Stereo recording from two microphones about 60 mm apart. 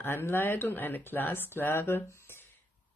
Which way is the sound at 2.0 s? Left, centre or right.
Left.